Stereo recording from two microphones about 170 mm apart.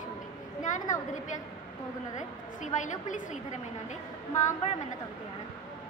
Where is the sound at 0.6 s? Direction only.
50° left (ahead or behind).